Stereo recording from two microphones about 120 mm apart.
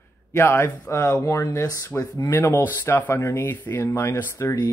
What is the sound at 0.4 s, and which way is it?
Speech, 20° left (ahead or behind).